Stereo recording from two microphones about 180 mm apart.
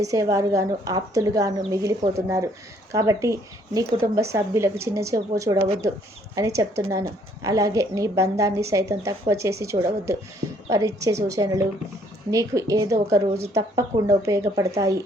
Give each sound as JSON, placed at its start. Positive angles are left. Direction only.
{"t": 0.0, "sound": "a woman's voice", "side_deg": -20}